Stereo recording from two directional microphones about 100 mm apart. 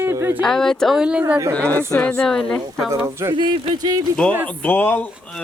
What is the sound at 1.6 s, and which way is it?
Speech, 10° left (ahead or behind).